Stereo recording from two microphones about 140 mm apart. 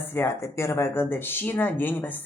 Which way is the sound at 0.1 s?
20° left (ahead or behind).